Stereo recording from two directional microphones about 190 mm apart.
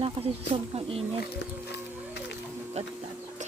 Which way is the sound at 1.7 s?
60° left (ahead or behind).